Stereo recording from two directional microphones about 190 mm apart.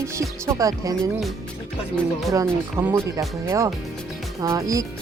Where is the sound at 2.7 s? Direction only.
10° right (ahead or behind).